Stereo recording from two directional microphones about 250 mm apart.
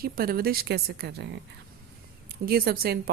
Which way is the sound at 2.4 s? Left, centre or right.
Right.